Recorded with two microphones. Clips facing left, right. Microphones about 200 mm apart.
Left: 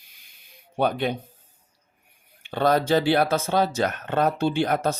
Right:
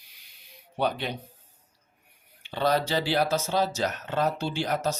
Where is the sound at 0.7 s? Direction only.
50° left (ahead or behind).